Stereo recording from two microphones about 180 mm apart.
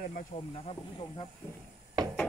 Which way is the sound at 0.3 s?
45° left (ahead or behind).